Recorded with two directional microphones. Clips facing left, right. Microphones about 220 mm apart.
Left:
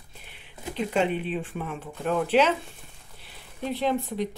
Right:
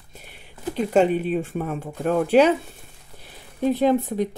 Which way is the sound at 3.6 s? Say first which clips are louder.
Right 8 dB; 45° right (ahead or behind).